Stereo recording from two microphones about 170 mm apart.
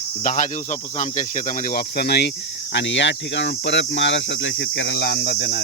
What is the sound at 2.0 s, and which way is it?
Cricket, 75° left (ahead or behind).